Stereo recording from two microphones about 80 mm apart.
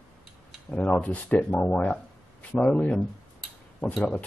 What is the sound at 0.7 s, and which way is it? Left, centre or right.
Speech, centre.